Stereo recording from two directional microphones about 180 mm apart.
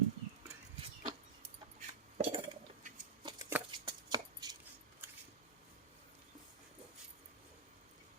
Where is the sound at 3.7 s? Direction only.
25° right (ahead or behind).